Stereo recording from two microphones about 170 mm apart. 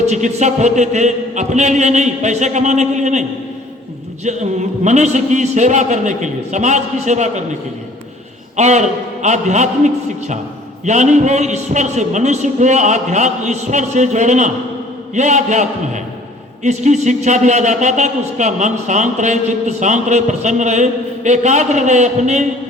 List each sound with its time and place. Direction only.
0.0 s a man's voice: 45° right (ahead or behind)
4.8 s a man's voice: 45° right (ahead or behind)
8.5 s a man's voice: 40° right (ahead or behind)